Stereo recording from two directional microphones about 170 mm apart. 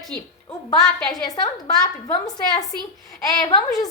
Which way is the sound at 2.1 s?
25° left (ahead or behind).